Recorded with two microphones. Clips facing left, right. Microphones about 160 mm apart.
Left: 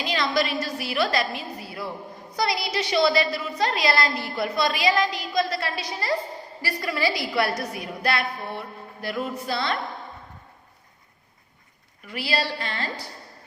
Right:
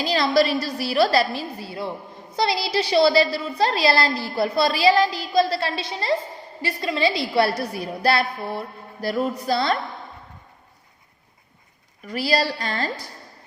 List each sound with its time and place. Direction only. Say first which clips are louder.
0.0 s a woman's voice: right 5 dB; 35° right (ahead or behind)
12.0 s a woman's voice: right 5 dB; 40° right (ahead or behind)